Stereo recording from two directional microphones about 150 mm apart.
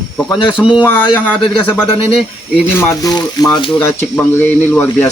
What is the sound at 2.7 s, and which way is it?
Speech, 20° left (ahead or behind).